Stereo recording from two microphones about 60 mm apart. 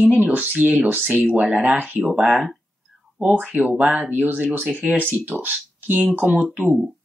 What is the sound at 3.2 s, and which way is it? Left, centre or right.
Speech, right.